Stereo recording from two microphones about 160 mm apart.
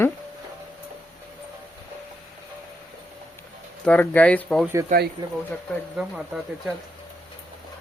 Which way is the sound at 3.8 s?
10° left (ahead or behind).